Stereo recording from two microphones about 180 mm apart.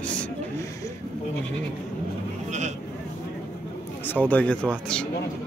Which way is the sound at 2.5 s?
40° right (ahead or behind).